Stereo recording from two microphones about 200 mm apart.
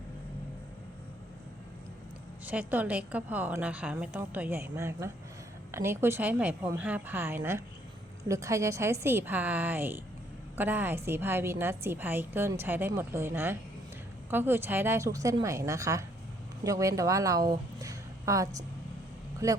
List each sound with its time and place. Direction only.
2.5 s a woman's voice: 10° right (ahead or behind)